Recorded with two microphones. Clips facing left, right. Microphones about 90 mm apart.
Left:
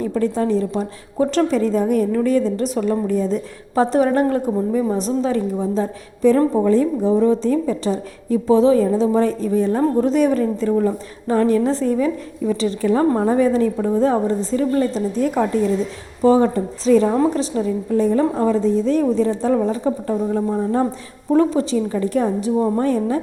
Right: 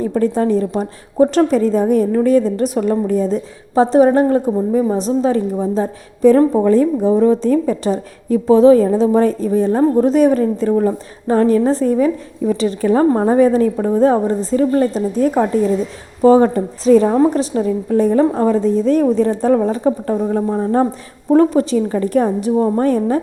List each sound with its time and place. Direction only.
0.0 s a woman's voice: 40° right (ahead or behind)
3.8 s a woman's voice: 35° right (ahead or behind)